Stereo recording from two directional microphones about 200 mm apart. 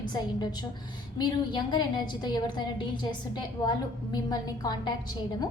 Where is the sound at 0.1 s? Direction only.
20° left (ahead or behind).